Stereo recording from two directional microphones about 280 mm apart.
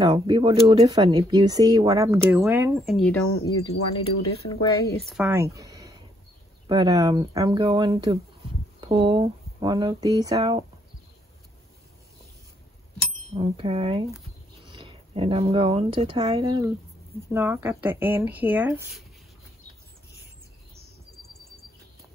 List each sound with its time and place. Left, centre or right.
0.0 s speech: centre
4.0 s speech: centre
5.0 s speech: centre
13.3 s speech: right